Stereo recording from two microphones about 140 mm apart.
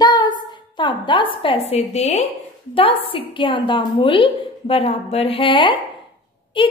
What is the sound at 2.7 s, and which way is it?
A woman's voice, 40° left (ahead or behind).